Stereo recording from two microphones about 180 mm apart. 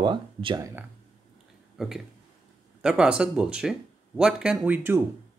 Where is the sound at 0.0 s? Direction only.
25° right (ahead or behind).